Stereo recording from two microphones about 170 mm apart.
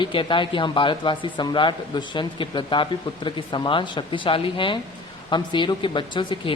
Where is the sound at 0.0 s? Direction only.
30° left (ahead or behind).